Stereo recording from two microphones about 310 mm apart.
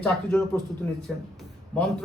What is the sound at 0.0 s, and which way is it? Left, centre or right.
Speech, centre.